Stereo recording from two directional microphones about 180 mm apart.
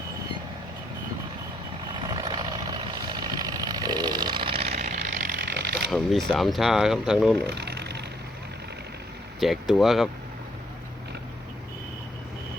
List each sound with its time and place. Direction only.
1.9 s vehicle: 25° right (ahead or behind); by 5.9 s 60° right (ahead or behind)
5.9 s speech: centre (ahead or behind)
7.4 s a sound: 65° right (ahead or behind)
9.4 s speech: centre (ahead or behind)